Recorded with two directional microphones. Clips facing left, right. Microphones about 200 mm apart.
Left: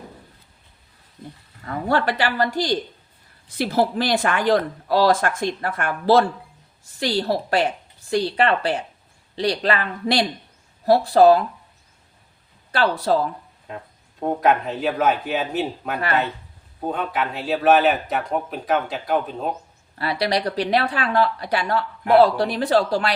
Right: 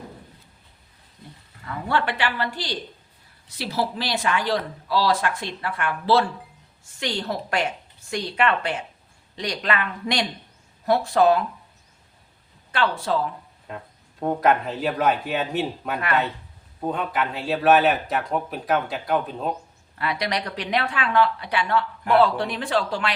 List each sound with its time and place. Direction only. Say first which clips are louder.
1.6 s speech: left 4 dB; 40° left (ahead or behind)
12.7 s speech: left 4 dB; 35° left (ahead or behind)
14.2 s speech: left 1 dB; 5° left (ahead or behind)
20.0 s speech: left 4 dB; 35° left (ahead or behind)